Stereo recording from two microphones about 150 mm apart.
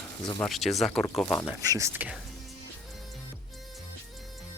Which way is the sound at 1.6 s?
25° right (ahead or behind).